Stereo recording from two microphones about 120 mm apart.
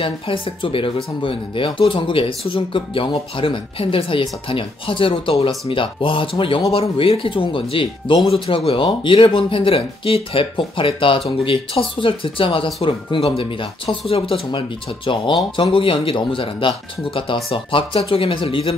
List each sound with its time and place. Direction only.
0.0 s speech: 45° left (ahead or behind)